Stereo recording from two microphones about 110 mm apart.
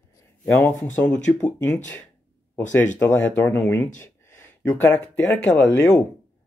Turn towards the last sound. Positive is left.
turn(degrees=30)  # may be behind; listen again after turning